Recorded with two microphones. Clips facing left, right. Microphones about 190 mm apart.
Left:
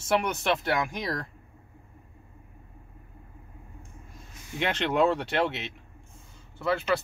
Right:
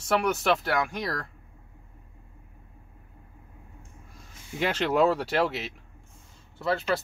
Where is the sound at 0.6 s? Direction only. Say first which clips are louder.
Even; 20° left (ahead or behind).